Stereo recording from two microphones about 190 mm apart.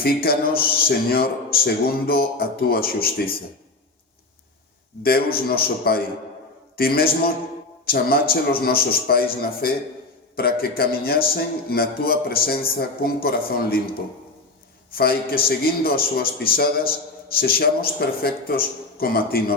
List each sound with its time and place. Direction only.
0.0 s a man's voice: 55° left (ahead or behind)
5.0 s a man's voice: 55° left (ahead or behind)
14.9 s a man's voice: 50° left (ahead or behind)